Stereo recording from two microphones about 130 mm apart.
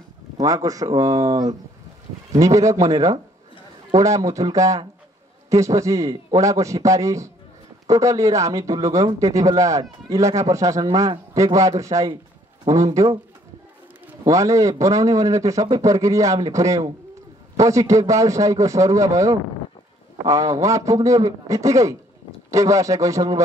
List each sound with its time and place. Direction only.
0.4 s a man's voice: 25° right (ahead or behind)
14.2 s a man's voice: 25° right (ahead or behind)